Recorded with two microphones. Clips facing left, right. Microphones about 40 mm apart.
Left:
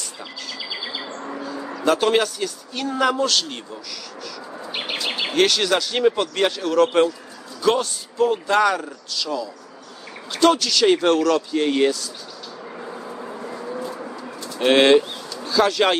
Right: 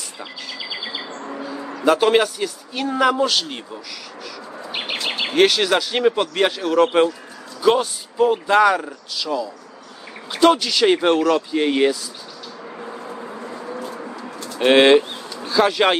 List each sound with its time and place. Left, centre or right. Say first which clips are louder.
0.6 s chirp: right 1 dB; centre
1.8 s a man's voice: right 3 dB; centre
12.7 s vehicle: right 1 dB; centre
14.6 s speech: right 2 dB; centre